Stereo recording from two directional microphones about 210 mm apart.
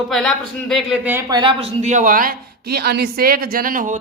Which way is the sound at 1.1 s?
15° right (ahead or behind).